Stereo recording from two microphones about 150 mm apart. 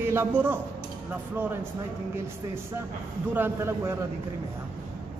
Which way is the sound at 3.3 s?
15° right (ahead or behind).